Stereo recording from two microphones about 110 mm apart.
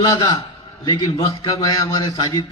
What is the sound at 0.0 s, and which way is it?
A man's voice, 40° left (ahead or behind).